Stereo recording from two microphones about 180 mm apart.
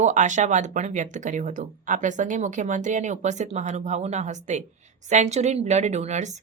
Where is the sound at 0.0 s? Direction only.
40° right (ahead or behind).